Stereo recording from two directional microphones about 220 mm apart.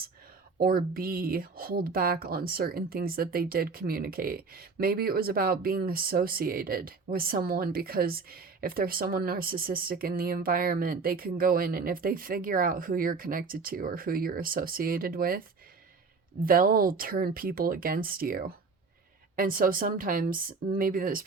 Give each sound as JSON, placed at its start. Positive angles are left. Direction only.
{"t": 0.6, "sound": "speech", "side_deg": -45}